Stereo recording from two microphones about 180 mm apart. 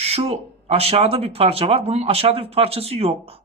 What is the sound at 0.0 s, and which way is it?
Speech, 35° right (ahead or behind).